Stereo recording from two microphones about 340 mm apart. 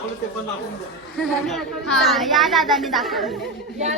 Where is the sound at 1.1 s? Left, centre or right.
Centre.